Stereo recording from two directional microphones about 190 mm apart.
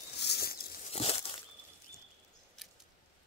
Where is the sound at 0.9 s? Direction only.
30° left (ahead or behind).